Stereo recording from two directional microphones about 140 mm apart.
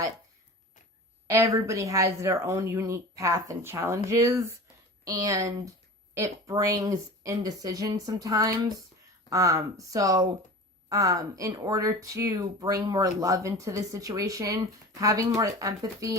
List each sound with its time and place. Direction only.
1.3 s speech: 25° right (ahead or behind)